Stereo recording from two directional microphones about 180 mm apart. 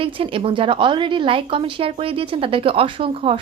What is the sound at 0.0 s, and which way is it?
A woman's voice, 30° right (ahead or behind).